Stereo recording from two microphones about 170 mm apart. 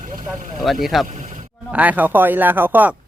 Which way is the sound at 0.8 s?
Centre (ahead or behind).